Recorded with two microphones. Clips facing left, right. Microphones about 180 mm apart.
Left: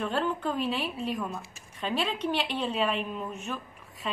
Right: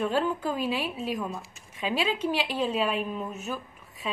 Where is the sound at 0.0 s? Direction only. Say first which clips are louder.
Right 2 dB; 5° right (ahead or behind).